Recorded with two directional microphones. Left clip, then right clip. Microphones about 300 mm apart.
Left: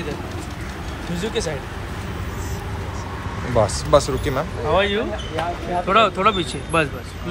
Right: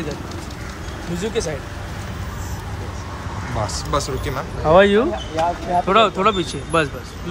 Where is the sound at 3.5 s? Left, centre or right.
Centre.